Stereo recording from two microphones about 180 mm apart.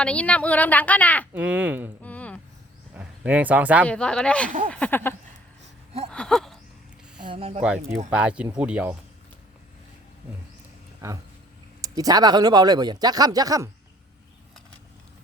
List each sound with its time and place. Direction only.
0.0 s a woman's voice: 5° left (ahead or behind)
1.3 s a child's voice: 10° right (ahead or behind)
2.0 s a sound: 10° left (ahead or behind)
2.9 s speech: 10° right (ahead or behind)
3.8 s a woman's voice: 5° left (ahead or behind)
6.1 s a sound: 5° left (ahead or behind)
7.3 s speech: 30° right (ahead or behind)
8.1 s a child's voice: 5° right (ahead or behind)
11.0 s speech: 20° right (ahead or behind)